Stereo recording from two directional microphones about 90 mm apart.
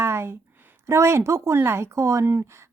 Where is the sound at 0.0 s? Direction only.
30° right (ahead or behind).